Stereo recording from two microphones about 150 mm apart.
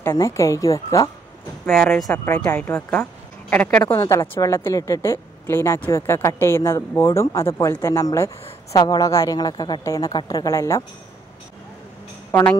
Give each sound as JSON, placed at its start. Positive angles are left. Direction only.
{"t": 0.0, "sound": "speech", "side_deg": 20}
{"t": 1.7, "sound": "speech", "side_deg": 0}
{"t": 2.2, "sound": "speech", "side_deg": 10}
{"t": 12.3, "sound": "a woman's voice", "side_deg": 15}